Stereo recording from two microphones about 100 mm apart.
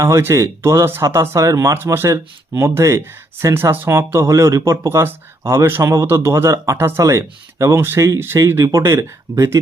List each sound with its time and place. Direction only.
0.0 s speech: 25° right (ahead or behind)